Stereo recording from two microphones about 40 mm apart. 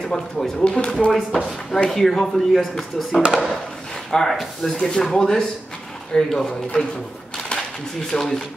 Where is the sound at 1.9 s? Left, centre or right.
Centre.